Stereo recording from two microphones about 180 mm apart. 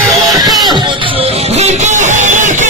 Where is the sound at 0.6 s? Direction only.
25° right (ahead or behind).